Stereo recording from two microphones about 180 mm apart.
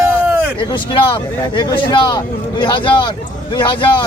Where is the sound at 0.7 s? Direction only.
30° left (ahead or behind).